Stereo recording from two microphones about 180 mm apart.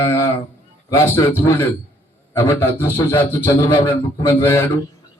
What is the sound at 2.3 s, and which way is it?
Speech, 15° left (ahead or behind).